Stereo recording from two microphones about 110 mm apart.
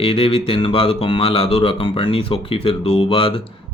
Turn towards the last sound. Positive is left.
turn(degrees=55)  # may be behind; listen again after turning